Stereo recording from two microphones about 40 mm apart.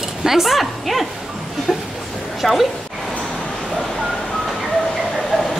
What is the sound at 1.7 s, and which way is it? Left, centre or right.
Speech, centre.